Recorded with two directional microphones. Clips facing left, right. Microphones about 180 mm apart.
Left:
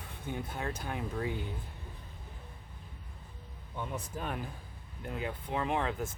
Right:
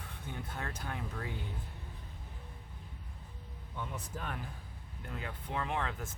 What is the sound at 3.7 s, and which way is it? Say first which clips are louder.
Speech: left 3 dB; 20° left (ahead or behind).